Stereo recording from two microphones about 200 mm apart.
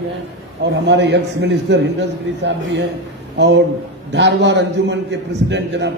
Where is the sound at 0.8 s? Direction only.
65° right (ahead or behind).